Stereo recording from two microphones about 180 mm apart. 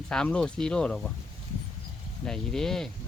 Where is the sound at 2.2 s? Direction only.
5° left (ahead or behind).